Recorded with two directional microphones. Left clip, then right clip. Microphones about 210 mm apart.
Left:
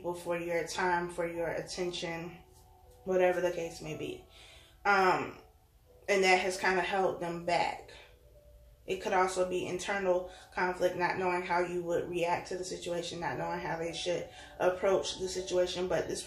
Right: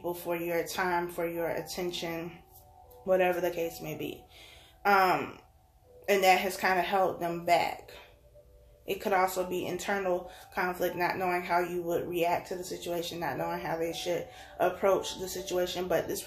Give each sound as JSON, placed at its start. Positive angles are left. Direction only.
{"t": 0.0, "sound": "speech", "side_deg": -50}
{"t": 4.8, "sound": "a sound", "side_deg": -50}
{"t": 6.0, "sound": "speech", "side_deg": -50}
{"t": 8.8, "sound": "speech", "side_deg": -50}